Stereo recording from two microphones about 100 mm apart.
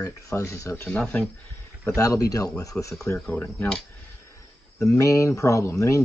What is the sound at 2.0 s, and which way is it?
Speech, 35° left (ahead or behind).